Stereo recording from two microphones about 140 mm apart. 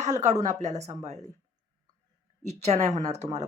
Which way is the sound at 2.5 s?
50° right (ahead or behind).